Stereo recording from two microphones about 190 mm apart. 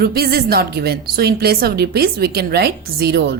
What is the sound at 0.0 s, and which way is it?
A woman's voice, 55° right (ahead or behind).